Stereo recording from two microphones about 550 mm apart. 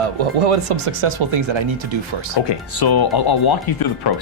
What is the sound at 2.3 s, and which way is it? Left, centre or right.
Speech, left.